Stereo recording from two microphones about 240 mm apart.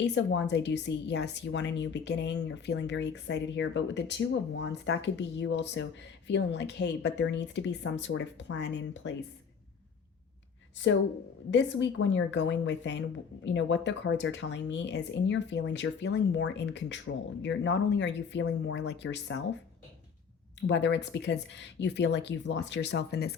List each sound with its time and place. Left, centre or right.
0.0 s a woman's voice: left
11.5 s a woman's voice: left
20.7 s a woman's voice: left